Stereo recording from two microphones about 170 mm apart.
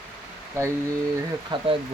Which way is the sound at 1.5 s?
30° right (ahead or behind).